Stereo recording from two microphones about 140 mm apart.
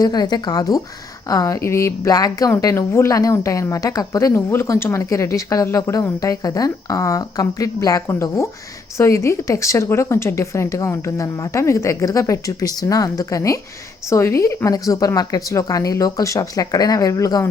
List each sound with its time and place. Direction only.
0.0 s a woman's voice: 30° left (ahead or behind)